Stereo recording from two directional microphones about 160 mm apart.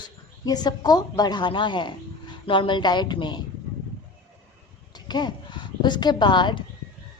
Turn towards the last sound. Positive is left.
turn(degrees=30)  # may be behind; listen again after turning